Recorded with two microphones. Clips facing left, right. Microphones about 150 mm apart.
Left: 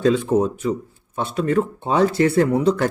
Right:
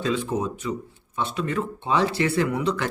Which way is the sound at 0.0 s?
50° left (ahead or behind).